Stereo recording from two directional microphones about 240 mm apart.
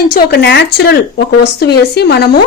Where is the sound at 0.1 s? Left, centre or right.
Left.